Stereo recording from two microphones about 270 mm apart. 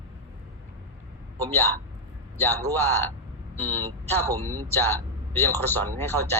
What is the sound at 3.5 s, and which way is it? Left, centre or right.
Vehicle, centre.